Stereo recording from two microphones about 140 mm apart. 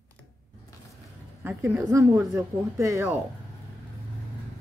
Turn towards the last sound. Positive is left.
turn(degrees=-20)  # may be behind; listen again after turning